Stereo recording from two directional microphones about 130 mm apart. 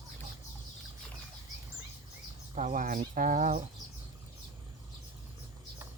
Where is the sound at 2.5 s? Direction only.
85° right.